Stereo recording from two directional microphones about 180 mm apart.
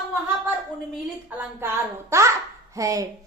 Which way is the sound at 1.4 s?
10° right (ahead or behind).